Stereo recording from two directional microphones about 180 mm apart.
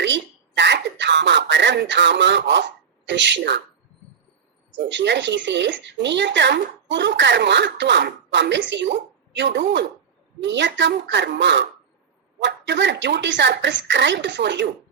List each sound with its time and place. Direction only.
0.0 s a sound: 80° right
3.1 s speech: 80° right
4.9 s speech: 75° right (ahead or behind)